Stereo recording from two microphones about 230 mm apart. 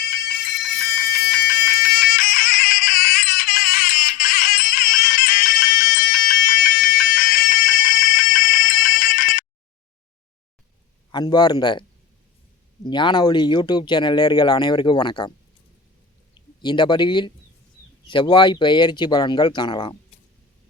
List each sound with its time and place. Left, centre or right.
0.0 s music: left
11.1 s speech: centre
16.6 s speech: centre